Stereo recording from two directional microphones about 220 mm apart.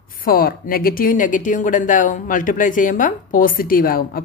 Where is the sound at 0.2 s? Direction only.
40° left (ahead or behind).